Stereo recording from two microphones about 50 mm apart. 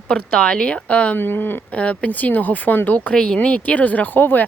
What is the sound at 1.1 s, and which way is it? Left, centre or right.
Speech, left.